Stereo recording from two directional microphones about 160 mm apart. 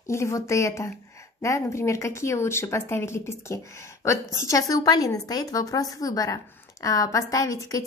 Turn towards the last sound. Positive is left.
turn(degrees=20)  # may be behind; listen again after turning